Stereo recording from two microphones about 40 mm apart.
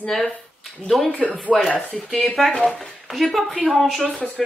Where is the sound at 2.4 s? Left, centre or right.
Centre.